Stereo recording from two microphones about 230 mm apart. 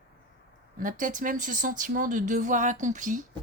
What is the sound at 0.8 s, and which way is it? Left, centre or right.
Speech, right.